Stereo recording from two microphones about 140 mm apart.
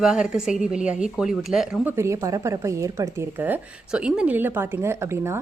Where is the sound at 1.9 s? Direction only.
20° right (ahead or behind).